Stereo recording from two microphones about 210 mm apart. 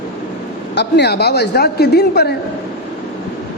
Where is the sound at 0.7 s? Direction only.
55° left (ahead or behind).